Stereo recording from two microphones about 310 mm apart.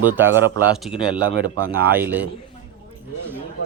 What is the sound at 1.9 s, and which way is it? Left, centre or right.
Speech, centre.